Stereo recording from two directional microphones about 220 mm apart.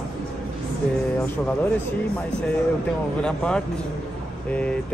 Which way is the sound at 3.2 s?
5° left (ahead or behind).